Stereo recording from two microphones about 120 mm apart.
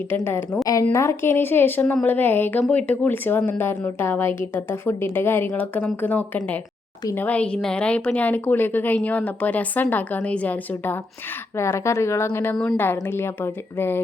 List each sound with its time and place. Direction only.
0.3 s a woman's voice: 20° left (ahead or behind)